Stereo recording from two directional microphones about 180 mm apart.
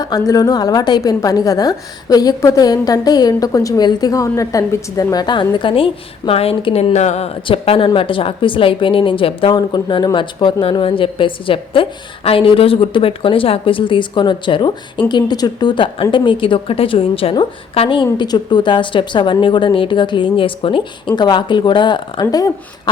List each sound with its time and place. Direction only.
0.0 s a woman's voice: 20° left (ahead or behind)